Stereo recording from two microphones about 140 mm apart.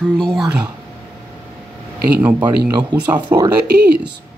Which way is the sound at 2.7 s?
30° right (ahead or behind).